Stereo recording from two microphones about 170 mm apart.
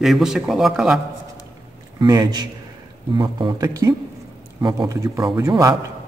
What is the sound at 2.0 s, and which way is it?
Speech, 25° right (ahead or behind).